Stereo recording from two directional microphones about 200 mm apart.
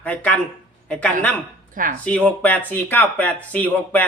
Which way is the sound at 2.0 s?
5° left (ahead or behind).